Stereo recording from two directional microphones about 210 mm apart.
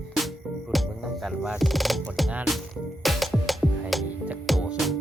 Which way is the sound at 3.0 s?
Centre (ahead or behind).